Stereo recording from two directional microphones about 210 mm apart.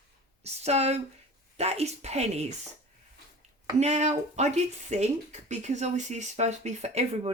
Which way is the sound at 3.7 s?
35° right (ahead or behind).